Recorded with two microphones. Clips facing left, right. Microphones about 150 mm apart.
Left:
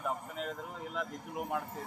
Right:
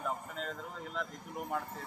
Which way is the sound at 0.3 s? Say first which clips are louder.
Left 2 dB; 10° left (ahead or behind).